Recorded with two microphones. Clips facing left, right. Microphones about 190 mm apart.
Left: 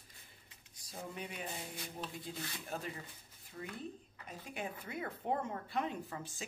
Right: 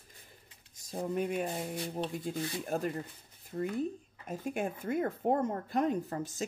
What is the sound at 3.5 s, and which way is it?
Speech, 35° right (ahead or behind).